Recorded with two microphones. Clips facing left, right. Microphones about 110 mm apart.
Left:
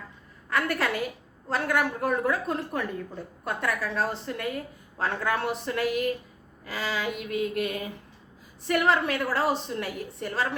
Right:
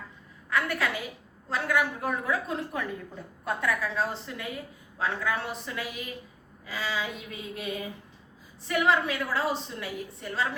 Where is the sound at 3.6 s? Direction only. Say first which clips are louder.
Left 1 dB; 55° left (ahead or behind).